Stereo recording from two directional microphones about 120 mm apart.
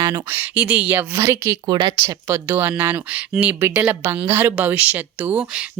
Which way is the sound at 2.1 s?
20° right (ahead or behind).